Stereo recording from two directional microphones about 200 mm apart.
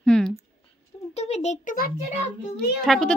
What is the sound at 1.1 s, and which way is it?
Speech, 30° left (ahead or behind).